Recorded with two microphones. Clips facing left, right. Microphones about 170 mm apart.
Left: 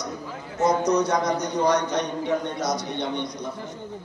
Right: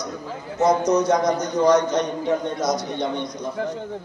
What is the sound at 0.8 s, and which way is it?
A man's voice, 65° left (ahead or behind).